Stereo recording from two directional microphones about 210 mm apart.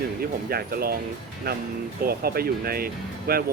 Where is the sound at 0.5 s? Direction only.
45° right (ahead or behind).